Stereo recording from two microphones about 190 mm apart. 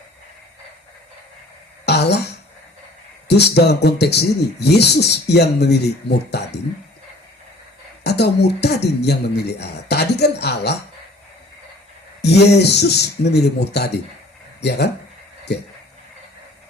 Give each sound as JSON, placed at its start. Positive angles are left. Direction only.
{"t": 1.8, "sound": "a sound", "side_deg": 60}
{"t": 3.2, "sound": "speech", "side_deg": 60}
{"t": 8.0, "sound": "speech", "side_deg": 60}
{"t": 12.2, "sound": "speech", "side_deg": 60}